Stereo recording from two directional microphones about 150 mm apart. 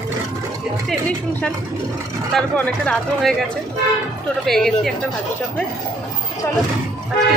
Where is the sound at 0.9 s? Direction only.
5° left (ahead or behind).